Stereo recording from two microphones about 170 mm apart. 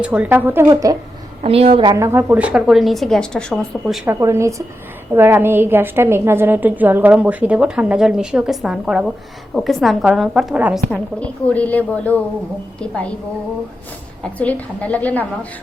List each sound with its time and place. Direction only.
0.0 s a woman's voice: 10° right (ahead or behind)
1.5 s a woman's voice: 35° right (ahead or behind)
1.9 s a woman's voice: 15° right (ahead or behind)
4.0 s a woman's voice: 15° right (ahead or behind)
11.2 s a woman's voice: 10° left (ahead or behind)
14.3 s a woman's voice: 10° left (ahead or behind)